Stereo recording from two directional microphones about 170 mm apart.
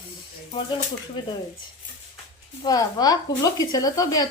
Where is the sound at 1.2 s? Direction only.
25° left (ahead or behind).